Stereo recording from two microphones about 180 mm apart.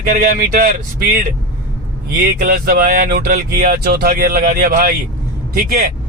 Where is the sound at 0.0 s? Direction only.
55° right (ahead or behind).